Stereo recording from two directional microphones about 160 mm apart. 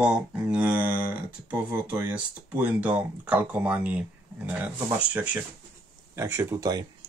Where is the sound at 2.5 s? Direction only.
10° right (ahead or behind).